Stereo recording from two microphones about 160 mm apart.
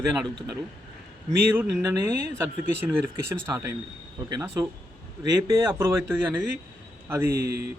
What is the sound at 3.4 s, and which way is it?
A man's voice, 20° right (ahead or behind).